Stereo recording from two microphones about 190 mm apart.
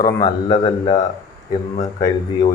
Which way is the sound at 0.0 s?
20° left (ahead or behind).